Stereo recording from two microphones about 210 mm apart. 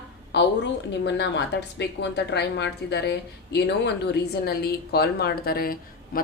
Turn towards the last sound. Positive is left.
turn(degrees=45)  # may be behind; listen again after turning